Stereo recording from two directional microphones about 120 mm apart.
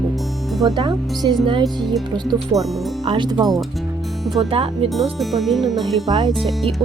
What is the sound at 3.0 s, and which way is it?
Speech, 40° right (ahead or behind).